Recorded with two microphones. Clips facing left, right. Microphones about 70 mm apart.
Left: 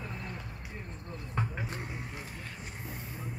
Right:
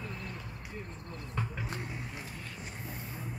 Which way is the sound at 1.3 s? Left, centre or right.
Left.